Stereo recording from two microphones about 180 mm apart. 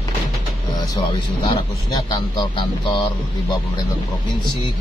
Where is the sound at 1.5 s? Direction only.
20° left (ahead or behind).